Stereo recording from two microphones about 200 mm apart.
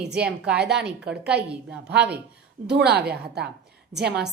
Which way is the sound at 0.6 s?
55° right (ahead or behind).